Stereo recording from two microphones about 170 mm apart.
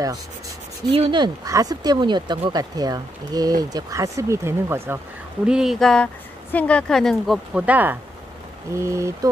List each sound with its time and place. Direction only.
0.9 s speech: 30° right (ahead or behind); by 4.9 s 15° right (ahead or behind)
5.5 s speech: 5° right (ahead or behind)